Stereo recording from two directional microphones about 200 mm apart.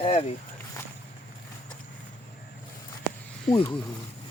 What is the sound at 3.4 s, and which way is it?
Speech, 30° left (ahead or behind).